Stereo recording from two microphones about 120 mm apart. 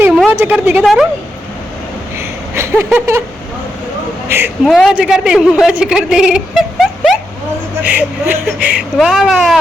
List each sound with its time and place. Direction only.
0.3 s a woman's voice: 15° right (ahead or behind)
2.1 s a sound: 20° right (ahead or behind)
4.3 s a woman's voice: 20° right (ahead or behind)
4.6 s a woman's voice: centre (ahead or behind)
7.9 s a woman's voice: 15° right (ahead or behind)